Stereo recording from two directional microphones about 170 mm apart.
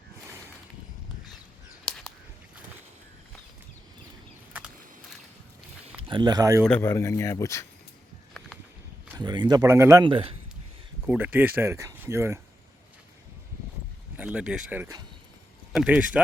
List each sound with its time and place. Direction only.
1.8 s a sound: 5° left (ahead or behind)
5.8 s a sound: 30° right (ahead or behind)
6.7 s speech: 10° left (ahead or behind)
9.1 s speech: 25° right (ahead or behind)
10.0 s speech: 30° right (ahead or behind)
11.0 s speech: 10° right (ahead or behind)
14.2 s speech: 5° right (ahead or behind)